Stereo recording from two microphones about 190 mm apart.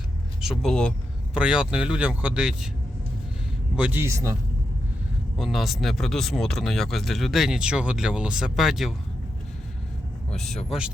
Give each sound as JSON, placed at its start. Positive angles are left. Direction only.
{"t": 0.4, "sound": "vehicle", "side_deg": 5}
{"t": 1.4, "sound": "speech", "side_deg": -5}
{"t": 3.8, "sound": "speech", "side_deg": -10}
{"t": 5.4, "sound": "speech", "side_deg": 0}
{"t": 10.3, "sound": "speech", "side_deg": 0}